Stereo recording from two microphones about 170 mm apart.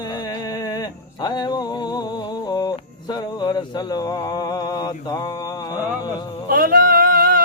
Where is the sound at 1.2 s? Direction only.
25° left (ahead or behind).